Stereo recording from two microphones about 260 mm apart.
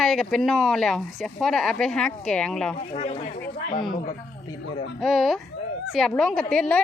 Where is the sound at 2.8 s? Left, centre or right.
Left.